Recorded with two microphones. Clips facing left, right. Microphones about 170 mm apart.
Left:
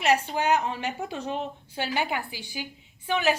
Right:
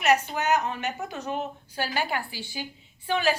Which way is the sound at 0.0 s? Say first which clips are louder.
Even; 30° left (ahead or behind).